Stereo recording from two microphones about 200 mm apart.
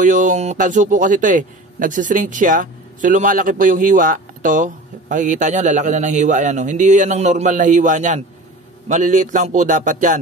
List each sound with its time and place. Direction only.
0.0 s speech: 40° right (ahead or behind)